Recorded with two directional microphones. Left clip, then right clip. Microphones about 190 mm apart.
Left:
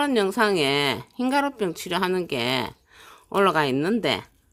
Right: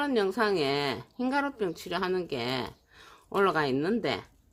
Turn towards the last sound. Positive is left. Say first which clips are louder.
# left 5 dB
turn(degrees=35)  # may be behind; listen again after turning